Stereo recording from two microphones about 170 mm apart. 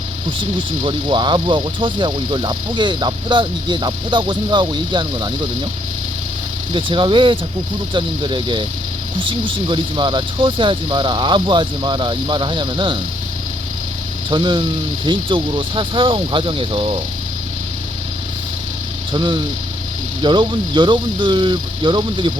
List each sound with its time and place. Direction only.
0.9 s speech: 25° right (ahead or behind)
6.7 s speech: 30° right (ahead or behind)
14.3 s speech: 25° right (ahead or behind)
19.1 s speech: 25° right (ahead or behind)